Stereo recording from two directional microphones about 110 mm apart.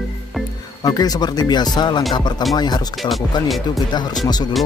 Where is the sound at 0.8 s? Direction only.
35° left (ahead or behind).